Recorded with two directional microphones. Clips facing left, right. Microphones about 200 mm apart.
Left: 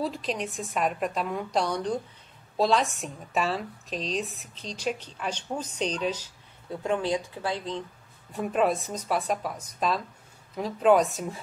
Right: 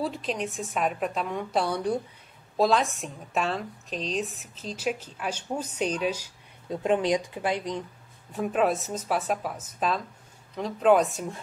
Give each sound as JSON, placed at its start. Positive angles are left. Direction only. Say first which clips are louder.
{"t": 0.0, "sound": "speech", "louder": "even", "side_deg": 0}
{"t": 6.7, "sound": "speech", "louder": "right 3 dB", "side_deg": -20}
{"t": 8.3, "sound": "speech", "louder": "even", "side_deg": 0}